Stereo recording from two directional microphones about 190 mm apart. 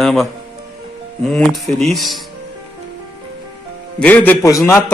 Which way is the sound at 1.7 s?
Centre (ahead or behind).